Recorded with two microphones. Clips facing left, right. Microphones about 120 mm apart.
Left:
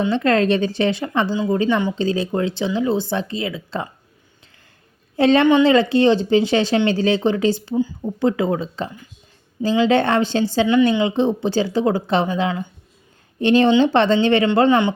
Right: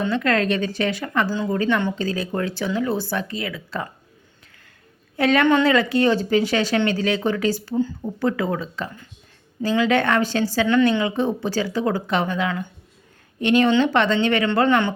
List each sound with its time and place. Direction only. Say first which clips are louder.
0.1 s speech: left 4 dB; 30° left (ahead or behind)
5.1 s speech: left 4 dB; 25° left (ahead or behind)
7.7 s a woman's voice: left 2 dB; 10° left (ahead or behind)
8.2 s speech: left 4 dB; 25° left (ahead or behind)
10.7 s a woman's voice: left 1 dB; 15° left (ahead or behind)
11.0 s speech: left 4 dB; 25° left (ahead or behind)